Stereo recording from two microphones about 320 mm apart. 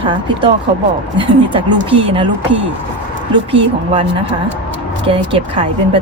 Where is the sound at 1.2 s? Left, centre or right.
Centre.